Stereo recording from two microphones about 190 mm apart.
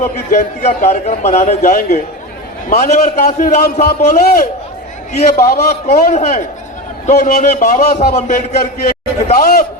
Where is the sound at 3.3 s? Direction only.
40° left (ahead or behind).